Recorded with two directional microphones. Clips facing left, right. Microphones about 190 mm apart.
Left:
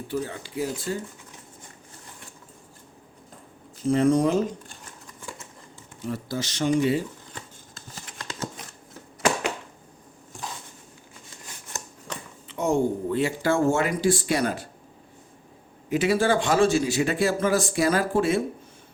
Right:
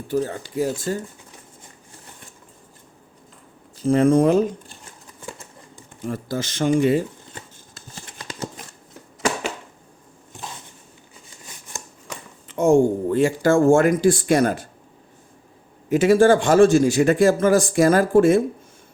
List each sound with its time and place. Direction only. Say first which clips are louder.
0.1 s a man's voice: right 7 dB; 40° right (ahead or behind)
3.8 s speech: right 5 dB; 55° right (ahead or behind)
6.0 s a man's voice: right 3 dB; 50° right (ahead or behind)
12.5 s a man's voice: right 7 dB; 45° right (ahead or behind)
15.9 s a man's voice: right 7 dB; 45° right (ahead or behind)